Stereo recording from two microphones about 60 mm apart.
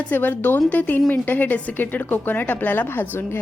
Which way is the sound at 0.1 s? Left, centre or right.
Left.